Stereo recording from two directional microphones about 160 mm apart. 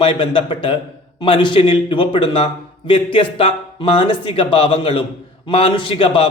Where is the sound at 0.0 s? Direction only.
35° left (ahead or behind).